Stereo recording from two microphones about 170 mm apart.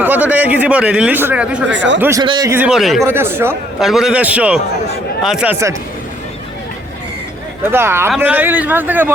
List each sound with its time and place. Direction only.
0.0 s a sound: 10° right (ahead or behind)
1.7 s speech: 90° right
2.0 s a man's voice: 15° right (ahead or behind)
2.2 s a man's voice: 25° right (ahead or behind)
2.5 s a man's voice: 5° right (ahead or behind)
3.0 s a man's voice: 15° right (ahead or behind)
3.8 s a man's voice: centre (ahead or behind)
7.7 s a man's voice: 15° right (ahead or behind)